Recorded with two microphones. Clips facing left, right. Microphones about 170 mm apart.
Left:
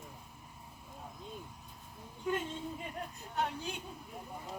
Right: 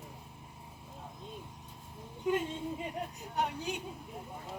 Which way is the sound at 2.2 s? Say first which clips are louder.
Right 4 dB; 15° right (ahead or behind).